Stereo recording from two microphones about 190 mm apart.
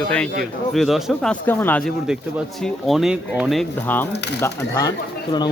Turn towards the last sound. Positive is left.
turn(degrees=20)  # may be behind; listen again after turning